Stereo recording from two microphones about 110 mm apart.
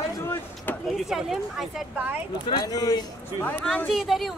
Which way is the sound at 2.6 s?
35° left (ahead or behind).